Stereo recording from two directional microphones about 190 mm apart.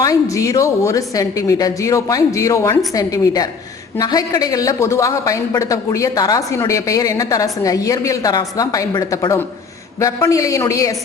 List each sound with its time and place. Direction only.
0.0 s a woman's voice: 20° left (ahead or behind)